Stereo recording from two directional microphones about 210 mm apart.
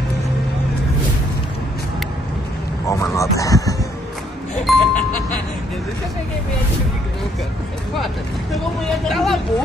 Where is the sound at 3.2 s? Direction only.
15° left (ahead or behind).